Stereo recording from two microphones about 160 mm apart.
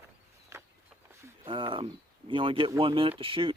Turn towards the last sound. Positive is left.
turn(degrees=-30)  # may be behind; listen again after turning